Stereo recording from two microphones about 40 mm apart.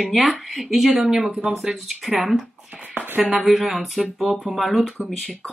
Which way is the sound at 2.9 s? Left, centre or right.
Right.